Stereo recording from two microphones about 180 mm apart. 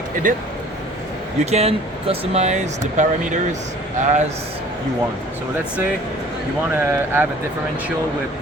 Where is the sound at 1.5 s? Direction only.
35° right (ahead or behind).